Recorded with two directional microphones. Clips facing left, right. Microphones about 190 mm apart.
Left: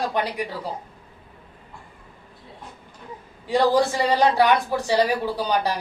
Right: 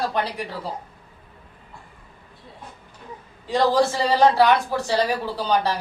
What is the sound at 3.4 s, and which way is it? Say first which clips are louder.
A woman's voice: even; 15° left (ahead or behind).